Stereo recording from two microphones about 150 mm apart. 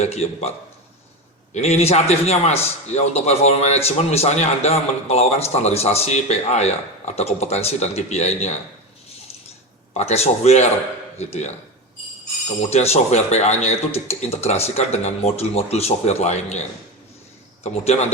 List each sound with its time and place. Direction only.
0.0 s a man's voice: 45° left (ahead or behind)
1.5 s a man's voice: 45° left (ahead or behind)
10.0 s a man's voice: 45° left (ahead or behind)
12.7 s a man's voice: 45° left (ahead or behind)